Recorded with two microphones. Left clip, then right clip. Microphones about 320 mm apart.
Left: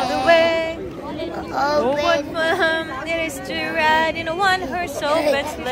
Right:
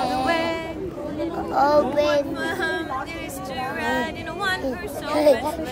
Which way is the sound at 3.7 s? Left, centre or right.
Centre.